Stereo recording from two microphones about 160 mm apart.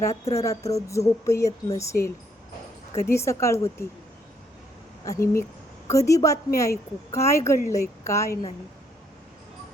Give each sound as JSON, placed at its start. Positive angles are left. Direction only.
{"t": 0.3, "sound": "speech", "side_deg": 20}
{"t": 5.0, "sound": "speech", "side_deg": 20}